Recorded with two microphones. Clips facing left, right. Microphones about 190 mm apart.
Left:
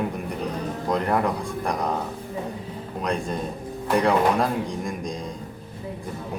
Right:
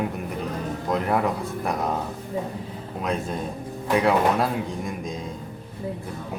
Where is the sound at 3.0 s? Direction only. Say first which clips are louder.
Even; 5° right (ahead or behind).